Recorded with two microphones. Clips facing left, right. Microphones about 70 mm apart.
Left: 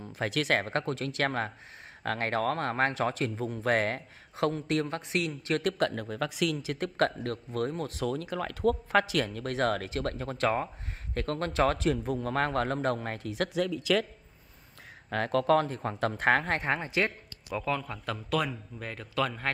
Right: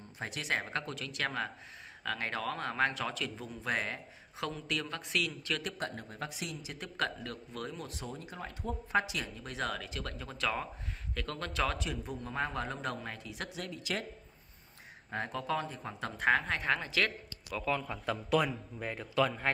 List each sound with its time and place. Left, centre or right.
0.2 s speech: left
5.4 s speech: left
5.9 s speech: left
8.1 s speech: left
15.0 s speech: left
16.6 s speech: left
17.6 s speech: centre